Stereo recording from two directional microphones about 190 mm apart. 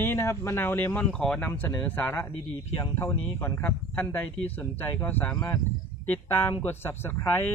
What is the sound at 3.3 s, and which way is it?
Speech, 15° left (ahead or behind).